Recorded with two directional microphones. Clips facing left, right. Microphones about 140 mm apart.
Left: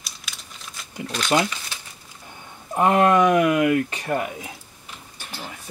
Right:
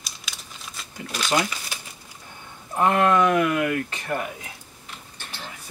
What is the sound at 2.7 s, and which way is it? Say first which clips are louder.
Speech: left 2 dB; 15° left (ahead or behind).